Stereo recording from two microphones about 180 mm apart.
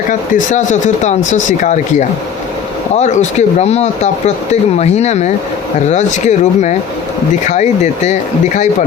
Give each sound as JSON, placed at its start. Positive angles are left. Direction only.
{"t": 0.1, "sound": "speech", "side_deg": 45}